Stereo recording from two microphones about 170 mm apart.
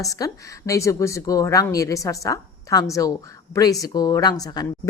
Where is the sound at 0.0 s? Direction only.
20° left (ahead or behind).